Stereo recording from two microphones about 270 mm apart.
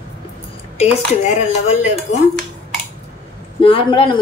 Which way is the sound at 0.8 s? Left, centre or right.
Left.